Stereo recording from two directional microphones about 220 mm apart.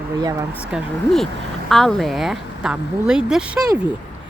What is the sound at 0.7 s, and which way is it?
Speech, centre (ahead or behind).